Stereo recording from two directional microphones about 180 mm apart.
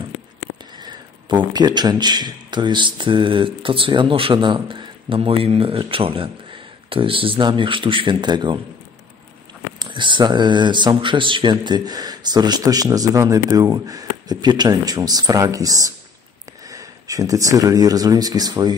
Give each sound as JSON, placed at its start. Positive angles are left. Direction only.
{"t": 0.8, "sound": "speech", "side_deg": -25}
{"t": 9.8, "sound": "speech", "side_deg": -25}